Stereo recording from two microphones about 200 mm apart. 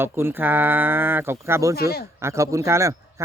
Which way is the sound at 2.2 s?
15° right (ahead or behind).